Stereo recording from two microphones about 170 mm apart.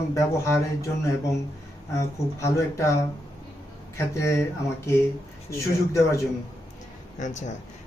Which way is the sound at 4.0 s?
15° left (ahead or behind).